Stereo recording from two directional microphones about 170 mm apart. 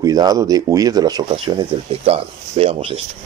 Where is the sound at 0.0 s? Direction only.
20° right (ahead or behind).